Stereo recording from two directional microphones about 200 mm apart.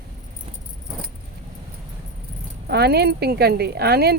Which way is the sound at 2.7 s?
55° right (ahead or behind).